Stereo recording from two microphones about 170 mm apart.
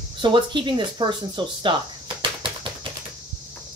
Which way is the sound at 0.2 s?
30° right (ahead or behind).